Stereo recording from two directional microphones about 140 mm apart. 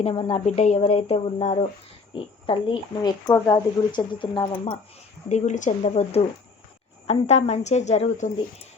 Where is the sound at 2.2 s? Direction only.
40° left (ahead or behind).